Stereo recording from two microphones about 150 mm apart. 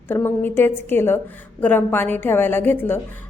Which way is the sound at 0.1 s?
15° left (ahead or behind).